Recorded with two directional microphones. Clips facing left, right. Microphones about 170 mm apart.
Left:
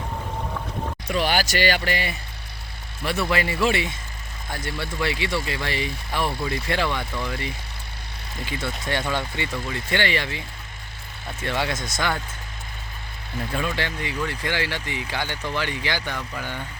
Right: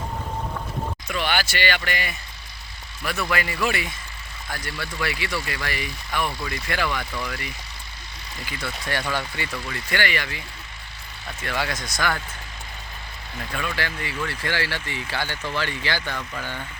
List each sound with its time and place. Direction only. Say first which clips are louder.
1.0 s speech: left 4 dB; 35° left (ahead or behind)
11.4 s speech: left 2 dB; 25° left (ahead or behind)
13.5 s speech: left 1 dB; 25° left (ahead or behind)